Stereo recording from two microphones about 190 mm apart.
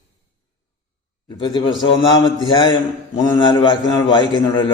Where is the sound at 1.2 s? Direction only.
20° left (ahead or behind).